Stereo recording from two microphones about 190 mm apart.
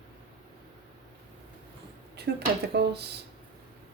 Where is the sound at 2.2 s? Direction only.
60° right (ahead or behind).